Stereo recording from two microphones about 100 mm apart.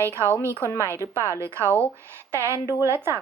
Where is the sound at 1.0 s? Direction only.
30° right (ahead or behind).